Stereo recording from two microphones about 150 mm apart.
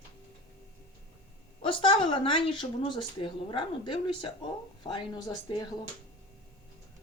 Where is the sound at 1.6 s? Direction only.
35° left (ahead or behind).